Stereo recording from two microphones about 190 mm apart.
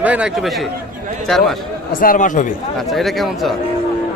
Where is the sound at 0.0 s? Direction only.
5° right (ahead or behind).